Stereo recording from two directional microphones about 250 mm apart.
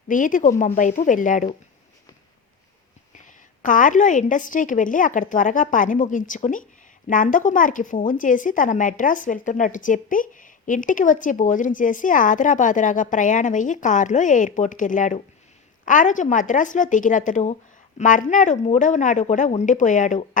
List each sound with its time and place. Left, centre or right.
0.1 s a woman's voice: left
3.2 s a woman's voice: left